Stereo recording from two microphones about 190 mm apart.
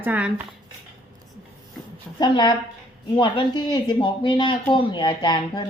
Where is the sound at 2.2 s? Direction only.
25° left (ahead or behind).